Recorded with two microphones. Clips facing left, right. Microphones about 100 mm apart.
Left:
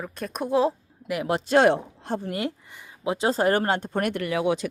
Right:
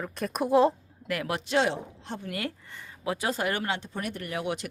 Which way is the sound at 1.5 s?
50° left (ahead or behind).